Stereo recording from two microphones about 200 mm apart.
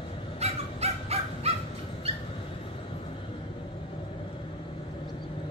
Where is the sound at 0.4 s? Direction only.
30° right (ahead or behind).